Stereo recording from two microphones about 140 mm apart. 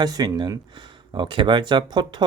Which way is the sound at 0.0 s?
30° right (ahead or behind).